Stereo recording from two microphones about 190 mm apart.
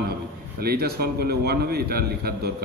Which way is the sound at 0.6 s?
55° right (ahead or behind).